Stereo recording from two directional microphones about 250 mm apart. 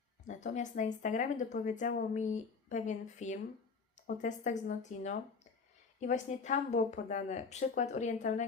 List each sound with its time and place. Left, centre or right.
0.3 s speech: left